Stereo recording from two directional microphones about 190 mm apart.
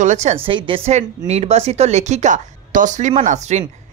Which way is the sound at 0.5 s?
25° right (ahead or behind).